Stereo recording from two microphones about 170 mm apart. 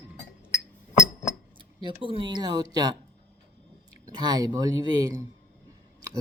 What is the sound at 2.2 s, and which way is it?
Speech, 25° right (ahead or behind).